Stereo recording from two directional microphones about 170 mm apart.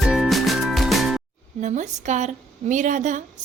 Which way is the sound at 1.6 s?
45° right (ahead or behind).